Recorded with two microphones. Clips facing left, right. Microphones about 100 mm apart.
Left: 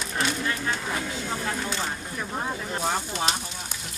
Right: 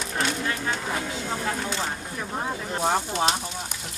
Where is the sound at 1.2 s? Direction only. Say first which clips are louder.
Right 1 dB; 15° right (ahead or behind).